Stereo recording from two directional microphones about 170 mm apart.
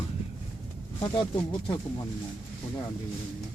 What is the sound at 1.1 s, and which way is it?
Speech, 30° left (ahead or behind).